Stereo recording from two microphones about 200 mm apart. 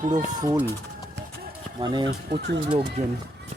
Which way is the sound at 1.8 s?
25° right (ahead or behind).